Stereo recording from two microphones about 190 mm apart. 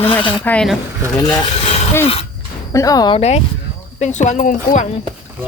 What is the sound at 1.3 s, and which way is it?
Speech, 30° left (ahead or behind).